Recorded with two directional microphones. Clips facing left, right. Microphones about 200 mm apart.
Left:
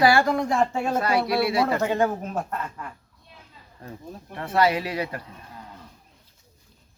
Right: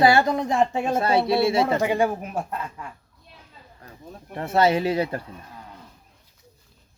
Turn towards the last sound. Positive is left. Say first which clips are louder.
# right 5 dB
turn(degrees=-30)  # may be behind; listen again after turning